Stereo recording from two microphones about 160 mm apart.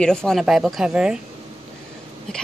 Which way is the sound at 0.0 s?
5° left (ahead or behind).